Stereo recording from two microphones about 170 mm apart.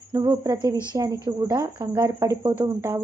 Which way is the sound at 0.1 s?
15° right (ahead or behind).